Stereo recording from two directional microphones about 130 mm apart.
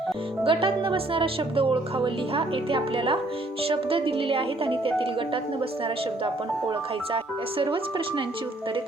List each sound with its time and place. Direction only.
0.4 s a woman's voice: 40° right (ahead or behind)
7.6 s speech: 40° right (ahead or behind)